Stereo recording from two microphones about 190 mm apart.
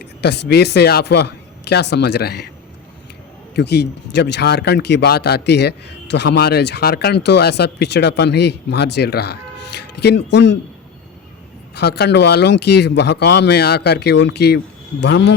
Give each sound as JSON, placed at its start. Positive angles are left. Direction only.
{"t": 0.2, "sound": "speech", "side_deg": 60}
{"t": 3.5, "sound": "speech", "side_deg": 60}
{"t": 11.7, "sound": "speech", "side_deg": 60}